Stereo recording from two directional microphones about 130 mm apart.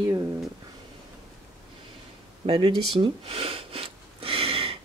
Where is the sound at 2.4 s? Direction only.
40° right (ahead or behind).